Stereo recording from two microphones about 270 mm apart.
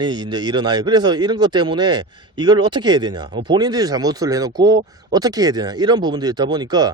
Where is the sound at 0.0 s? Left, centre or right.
Centre.